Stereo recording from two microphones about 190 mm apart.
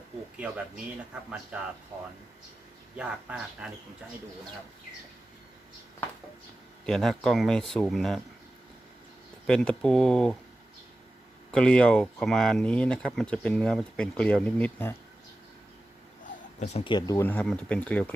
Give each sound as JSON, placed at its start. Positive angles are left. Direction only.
{"t": 1.5, "sound": "speech", "side_deg": -5}
{"t": 2.9, "sound": "speech", "side_deg": -5}
{"t": 6.8, "sound": "speech", "side_deg": 0}
{"t": 9.5, "sound": "speech", "side_deg": 5}
{"t": 11.5, "sound": "speech", "side_deg": 5}
{"t": 16.6, "sound": "speech", "side_deg": 35}
{"t": 17.2, "sound": "speech", "side_deg": 10}